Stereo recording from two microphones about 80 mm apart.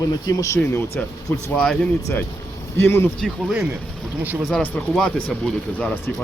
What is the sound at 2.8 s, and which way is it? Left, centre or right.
Speech, left.